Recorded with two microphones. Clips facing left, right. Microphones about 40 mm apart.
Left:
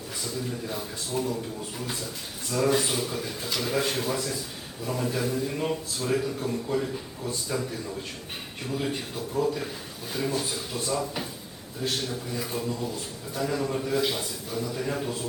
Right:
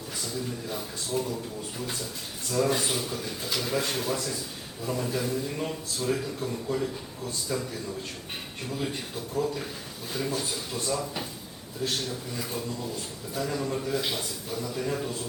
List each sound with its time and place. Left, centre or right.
0.7 s a man's voice: centre
2.5 s a man's voice: centre
9.3 s a man's voice: centre